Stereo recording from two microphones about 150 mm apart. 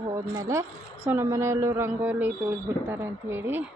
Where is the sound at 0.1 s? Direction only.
20° right (ahead or behind).